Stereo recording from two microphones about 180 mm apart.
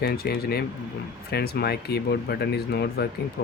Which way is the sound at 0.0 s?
60° left (ahead or behind).